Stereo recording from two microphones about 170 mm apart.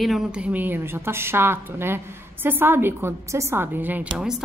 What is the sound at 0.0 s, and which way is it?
A woman's voice, centre (ahead or behind).